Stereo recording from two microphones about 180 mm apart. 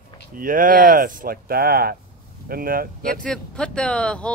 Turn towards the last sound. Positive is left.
turn(degrees=5)  # may be behind; listen again after turning